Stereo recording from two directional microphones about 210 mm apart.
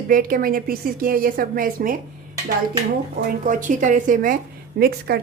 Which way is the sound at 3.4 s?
40° right (ahead or behind).